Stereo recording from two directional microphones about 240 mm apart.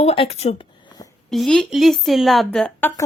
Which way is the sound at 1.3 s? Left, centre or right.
Centre.